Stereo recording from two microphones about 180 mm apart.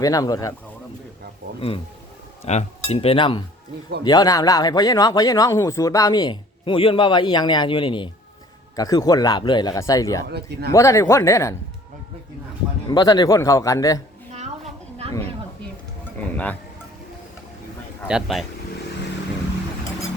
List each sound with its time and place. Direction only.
0.0 s speech: 20° left (ahead or behind)
2.4 s speech: 40° left (ahead or behind); by 10.2 s 20° left (ahead or behind)
10.2 s speech: 65° right (ahead or behind)
10.7 s speech: 15° left (ahead or behind)
12.9 s speech: 25° left (ahead or behind)
15.0 s a sound: 35° right (ahead or behind)
16.3 s speech: 10° left (ahead or behind)
18.1 s speech: centre (ahead or behind)